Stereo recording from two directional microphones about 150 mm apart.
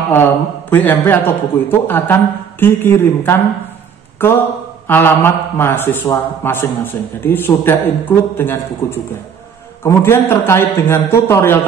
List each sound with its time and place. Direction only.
0.1 s a man's voice: 15° left (ahead or behind)